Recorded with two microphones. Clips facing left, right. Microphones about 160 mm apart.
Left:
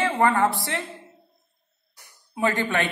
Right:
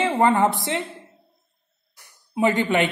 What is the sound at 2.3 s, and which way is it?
Speech, 20° right (ahead or behind).